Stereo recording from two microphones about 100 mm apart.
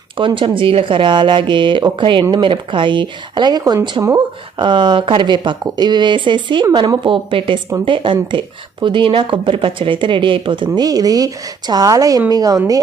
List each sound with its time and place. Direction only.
0.2 s speech: 60° right (ahead or behind); by 3.8 s 40° right (ahead or behind)
4.0 s a woman's voice: 50° right (ahead or behind)